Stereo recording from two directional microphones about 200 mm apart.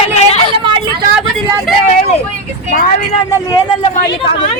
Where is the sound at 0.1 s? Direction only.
30° left (ahead or behind).